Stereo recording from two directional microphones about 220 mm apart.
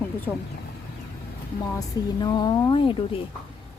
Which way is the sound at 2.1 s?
20° left (ahead or behind).